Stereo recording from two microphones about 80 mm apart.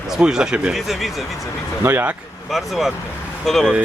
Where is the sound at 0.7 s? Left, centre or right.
Centre.